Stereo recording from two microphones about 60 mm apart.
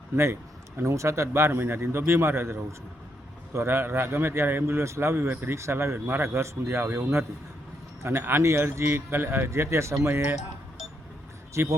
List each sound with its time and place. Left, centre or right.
0.9 s a man's voice: right
11.5 s a man's voice: right